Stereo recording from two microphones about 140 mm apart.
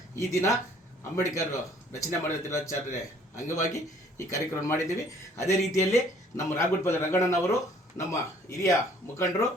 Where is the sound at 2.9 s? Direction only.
60° left (ahead or behind).